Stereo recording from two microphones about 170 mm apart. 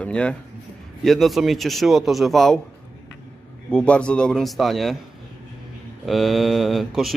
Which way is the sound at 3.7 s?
5° left (ahead or behind).